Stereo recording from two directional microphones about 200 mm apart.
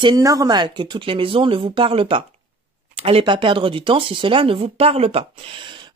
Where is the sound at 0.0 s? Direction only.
20° right (ahead or behind).